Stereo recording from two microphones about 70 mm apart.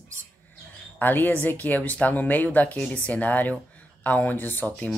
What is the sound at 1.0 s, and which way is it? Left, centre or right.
Speech, left.